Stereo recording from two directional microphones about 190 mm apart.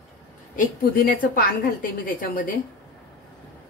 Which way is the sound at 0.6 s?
45° left (ahead or behind).